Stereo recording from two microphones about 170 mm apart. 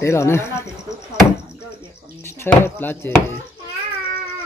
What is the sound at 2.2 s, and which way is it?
Speech, 15° left (ahead or behind).